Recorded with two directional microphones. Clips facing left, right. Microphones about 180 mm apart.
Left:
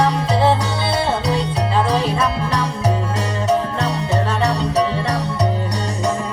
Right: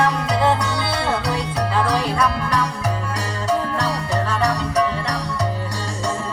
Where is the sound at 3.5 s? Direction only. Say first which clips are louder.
Left 2 dB; 20° left (ahead or behind).